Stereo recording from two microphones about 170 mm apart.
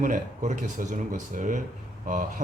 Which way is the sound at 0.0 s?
50° right (ahead or behind).